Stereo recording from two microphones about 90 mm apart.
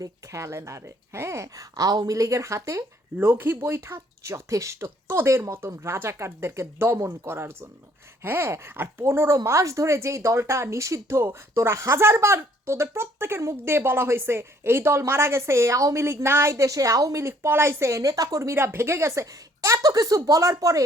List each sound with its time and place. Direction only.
0.0 s speech: 35° right (ahead or behind)
3.2 s speech: 25° right (ahead or behind)